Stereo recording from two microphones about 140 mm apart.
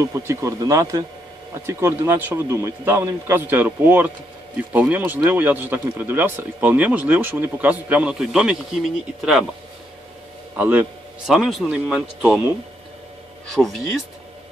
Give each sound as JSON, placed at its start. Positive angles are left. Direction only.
{"t": 0.0, "sound": "speech", "side_deg": -20}
{"t": 10.5, "sound": "a man's voice", "side_deg": -10}
{"t": 11.3, "sound": "speech", "side_deg": 0}
{"t": 13.6, "sound": "speech", "side_deg": 0}